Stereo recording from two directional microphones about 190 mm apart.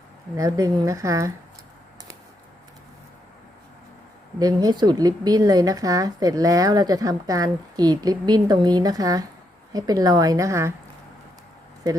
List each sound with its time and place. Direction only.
0.3 s a woman's voice: 20° right (ahead or behind)
4.4 s a woman's voice: 20° right (ahead or behind)